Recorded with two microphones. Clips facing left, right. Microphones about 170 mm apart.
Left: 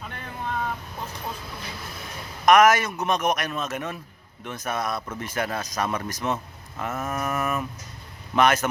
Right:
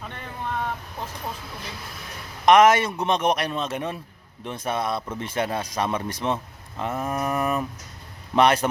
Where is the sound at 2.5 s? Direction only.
30° right (ahead or behind).